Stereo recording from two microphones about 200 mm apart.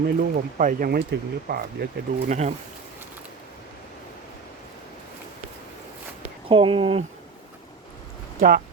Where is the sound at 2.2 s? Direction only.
35° right (ahead or behind).